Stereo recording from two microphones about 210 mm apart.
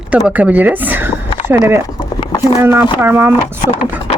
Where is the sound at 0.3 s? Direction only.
5° right (ahead or behind).